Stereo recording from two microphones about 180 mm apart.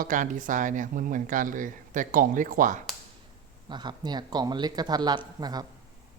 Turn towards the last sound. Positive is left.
turn(degrees=-20)  # may be behind; listen again after turning